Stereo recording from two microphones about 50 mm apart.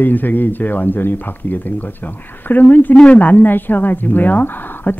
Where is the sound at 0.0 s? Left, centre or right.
Left.